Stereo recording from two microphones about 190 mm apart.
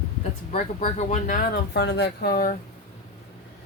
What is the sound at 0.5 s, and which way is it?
Speech, 40° left (ahead or behind).